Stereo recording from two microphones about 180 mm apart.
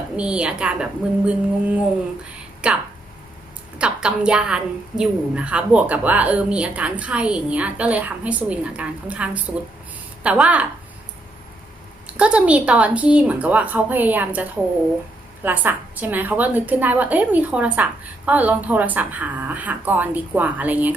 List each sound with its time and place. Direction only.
0.2 s a woman's voice: 5° right (ahead or behind)
12.0 s a woman's voice: 5° right (ahead or behind)
15.4 s a woman's voice: 10° right (ahead or behind)